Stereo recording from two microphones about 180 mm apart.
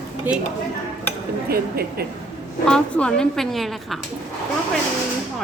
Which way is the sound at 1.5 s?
60° right (ahead or behind).